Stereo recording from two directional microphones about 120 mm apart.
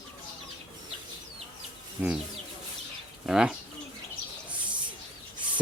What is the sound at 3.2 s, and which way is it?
Speech, 5° right (ahead or behind).